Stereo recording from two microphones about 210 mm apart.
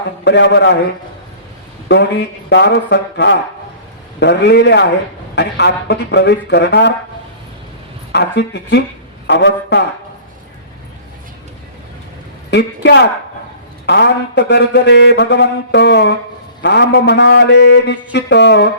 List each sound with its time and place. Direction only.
0.3 s mantra: 55° left (ahead or behind)
1.9 s mantra: 55° left (ahead or behind)
4.2 s speech: 55° left (ahead or behind)
8.1 s speech: 50° left (ahead or behind)
9.2 s mantra: 55° left (ahead or behind)
12.5 s mantra: 55° left (ahead or behind)